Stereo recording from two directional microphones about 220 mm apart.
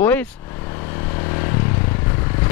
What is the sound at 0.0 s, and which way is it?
Vehicle, 5° left (ahead or behind).